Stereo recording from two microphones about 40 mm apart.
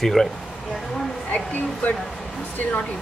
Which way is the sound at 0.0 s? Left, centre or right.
Centre.